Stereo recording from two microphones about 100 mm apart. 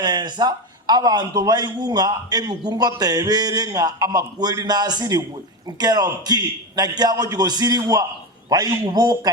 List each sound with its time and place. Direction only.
0.0 s a man's voice: 45° right (ahead or behind)